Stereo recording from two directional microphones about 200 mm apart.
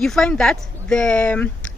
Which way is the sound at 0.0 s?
Centre (ahead or behind).